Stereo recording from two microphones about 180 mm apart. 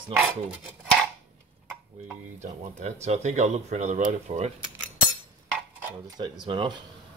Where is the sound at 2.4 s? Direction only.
40° right (ahead or behind).